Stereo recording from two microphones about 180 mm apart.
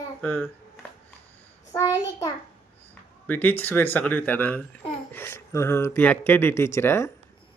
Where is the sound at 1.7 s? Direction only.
15° left (ahead or behind).